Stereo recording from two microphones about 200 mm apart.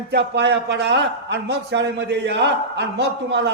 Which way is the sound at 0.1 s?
60° right (ahead or behind).